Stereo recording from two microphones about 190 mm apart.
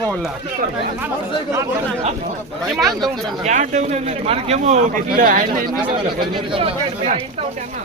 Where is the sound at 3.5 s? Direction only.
40° right (ahead or behind).